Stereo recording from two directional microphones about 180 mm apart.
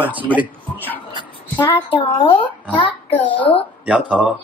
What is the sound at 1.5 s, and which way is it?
Speech, 25° left (ahead or behind).